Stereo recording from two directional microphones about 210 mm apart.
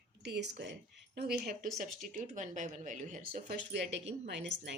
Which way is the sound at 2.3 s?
35° right (ahead or behind).